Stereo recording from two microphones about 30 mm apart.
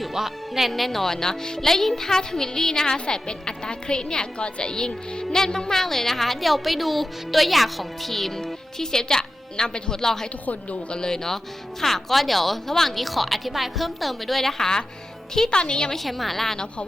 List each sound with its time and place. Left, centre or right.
0.0 s speech: centre
0.7 s speech: centre; by 4.7 s left
5.1 s a woman's voice: left; by 8.3 s centre
8.8 s a woman's voice: left
10.0 s speech: centre
10.4 s a woman's voice: left
10.9 s a woman's voice: left; by 14.5 s centre
14.6 s speech: centre
15.4 s a woman's voice: left
16.0 s a woman's voice: centre